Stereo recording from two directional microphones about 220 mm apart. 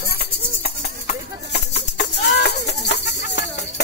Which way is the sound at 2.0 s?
45° left (ahead or behind).